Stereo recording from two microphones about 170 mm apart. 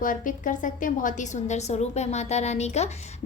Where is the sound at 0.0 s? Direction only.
50° left (ahead or behind).